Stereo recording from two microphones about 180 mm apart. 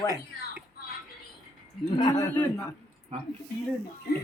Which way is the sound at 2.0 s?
20° left (ahead or behind).